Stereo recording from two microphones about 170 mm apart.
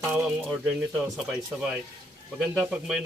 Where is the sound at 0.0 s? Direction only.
10° right (ahead or behind).